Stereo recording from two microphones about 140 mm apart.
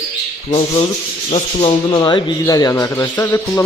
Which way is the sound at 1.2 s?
45° left (ahead or behind).